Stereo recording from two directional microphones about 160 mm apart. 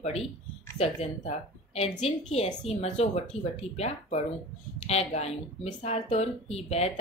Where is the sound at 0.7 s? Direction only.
40° left (ahead or behind).